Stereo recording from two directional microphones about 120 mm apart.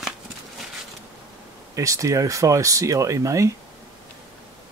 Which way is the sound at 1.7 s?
25° right (ahead or behind).